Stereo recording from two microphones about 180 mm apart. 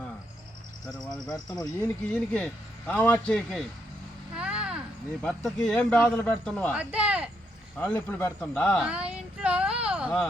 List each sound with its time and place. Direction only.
1.5 s speech: 20° left (ahead or behind)
2.3 s speech: 5° left (ahead or behind)
4.4 s a sound: 5° right (ahead or behind)
5.2 s speech: 10° left (ahead or behind)
6.7 s speech: 5° right (ahead or behind)
7.8 s speech: 10° left (ahead or behind)
8.8 s speech: 5° right (ahead or behind)